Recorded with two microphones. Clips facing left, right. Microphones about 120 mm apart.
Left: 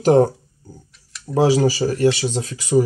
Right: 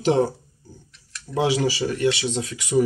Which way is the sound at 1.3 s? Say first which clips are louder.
Left 6 dB; 40° left (ahead or behind).